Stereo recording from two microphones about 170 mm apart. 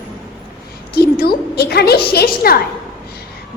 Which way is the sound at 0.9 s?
70° left (ahead or behind).